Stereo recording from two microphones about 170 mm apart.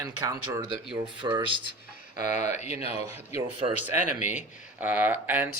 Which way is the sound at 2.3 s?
45° left (ahead or behind).